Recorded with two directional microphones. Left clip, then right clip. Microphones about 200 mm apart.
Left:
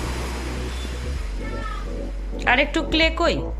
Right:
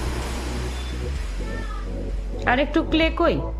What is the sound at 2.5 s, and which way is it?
Speech, 25° right (ahead or behind).